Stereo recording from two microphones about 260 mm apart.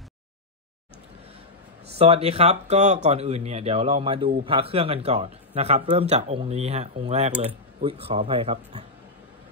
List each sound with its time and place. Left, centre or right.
2.0 s a man's voice: right